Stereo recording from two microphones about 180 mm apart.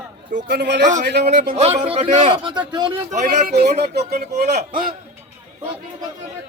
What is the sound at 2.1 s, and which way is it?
Speech, 30° right (ahead or behind).